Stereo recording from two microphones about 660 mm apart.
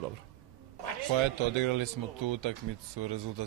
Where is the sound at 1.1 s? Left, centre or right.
Right.